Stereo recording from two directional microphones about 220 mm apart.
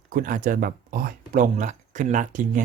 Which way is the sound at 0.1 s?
40° right (ahead or behind).